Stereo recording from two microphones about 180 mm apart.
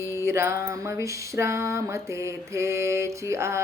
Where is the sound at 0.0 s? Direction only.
15° right (ahead or behind).